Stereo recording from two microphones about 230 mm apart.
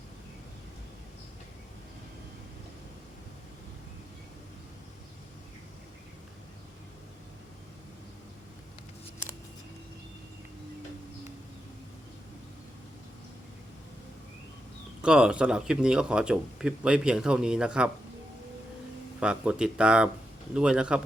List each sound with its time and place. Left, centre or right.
15.0 s speech: centre
19.2 s speech: centre